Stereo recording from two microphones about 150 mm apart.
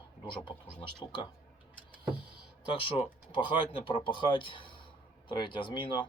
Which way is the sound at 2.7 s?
35° left (ahead or behind).